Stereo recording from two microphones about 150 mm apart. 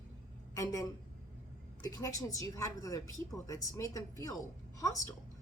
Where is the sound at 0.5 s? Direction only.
20° left (ahead or behind).